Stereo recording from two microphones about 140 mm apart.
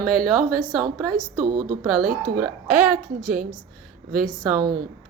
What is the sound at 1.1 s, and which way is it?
Speech, 90° right.